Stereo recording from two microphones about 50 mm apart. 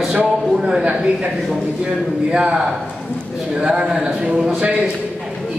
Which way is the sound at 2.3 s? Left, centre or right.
Centre.